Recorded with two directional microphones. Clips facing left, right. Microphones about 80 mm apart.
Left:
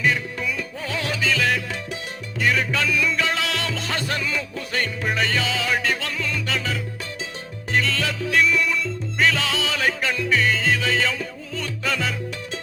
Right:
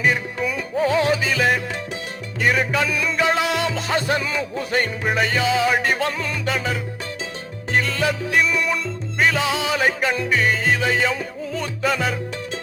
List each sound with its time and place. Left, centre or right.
0.0 s music: right